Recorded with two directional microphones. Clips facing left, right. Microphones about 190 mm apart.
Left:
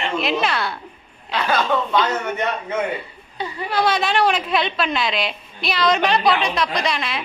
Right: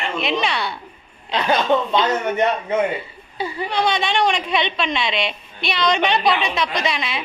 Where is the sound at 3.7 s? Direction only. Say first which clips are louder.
Left 2 dB; 5° left (ahead or behind).